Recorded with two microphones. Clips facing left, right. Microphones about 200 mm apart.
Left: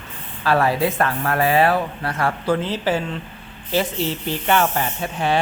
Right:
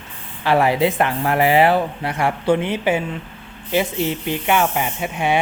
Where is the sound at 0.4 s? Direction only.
20° right (ahead or behind).